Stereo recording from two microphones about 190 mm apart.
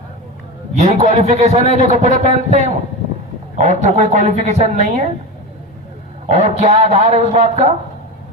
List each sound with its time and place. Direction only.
0.8 s a woman's voice: 35° right (ahead or behind)
6.2 s a woman's voice: 35° right (ahead or behind)